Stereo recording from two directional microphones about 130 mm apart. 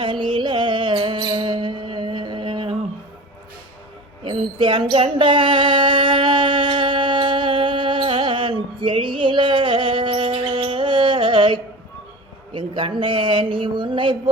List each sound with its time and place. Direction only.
0.0 s music: 40° right (ahead or behind)
4.2 s a sound: 40° right (ahead or behind)
12.5 s speech: 40° right (ahead or behind)